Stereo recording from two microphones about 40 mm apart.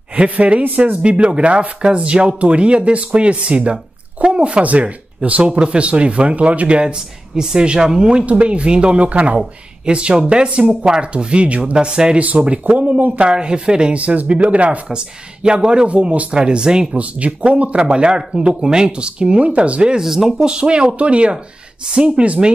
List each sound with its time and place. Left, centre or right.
0.1 s speech: right
0.7 s speech: right
1.0 s speech: right
12.2 s speech: right
13.3 s speech: right
13.9 s speech: right
16.9 s speech: right
20.0 s speech: centre
20.3 s speech: right